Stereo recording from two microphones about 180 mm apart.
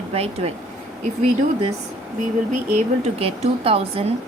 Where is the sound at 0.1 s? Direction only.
35° right (ahead or behind).